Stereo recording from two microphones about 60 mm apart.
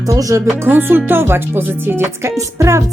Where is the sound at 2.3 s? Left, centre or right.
Right.